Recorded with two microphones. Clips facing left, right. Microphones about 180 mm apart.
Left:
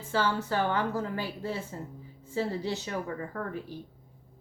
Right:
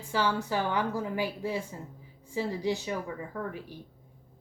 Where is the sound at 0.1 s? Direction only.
15° right (ahead or behind).